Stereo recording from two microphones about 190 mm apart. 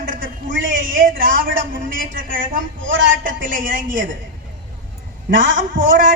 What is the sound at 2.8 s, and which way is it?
Speech, 80° right.